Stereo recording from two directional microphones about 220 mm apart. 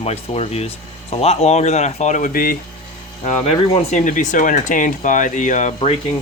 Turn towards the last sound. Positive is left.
turn(degrees=30)  # may be behind; listen again after turning